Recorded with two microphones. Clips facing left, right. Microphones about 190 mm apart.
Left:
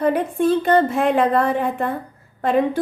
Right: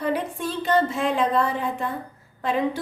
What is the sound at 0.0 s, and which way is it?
A woman's voice, 55° left (ahead or behind).